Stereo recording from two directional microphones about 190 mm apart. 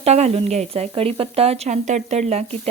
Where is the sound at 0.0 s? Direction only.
35° right (ahead or behind).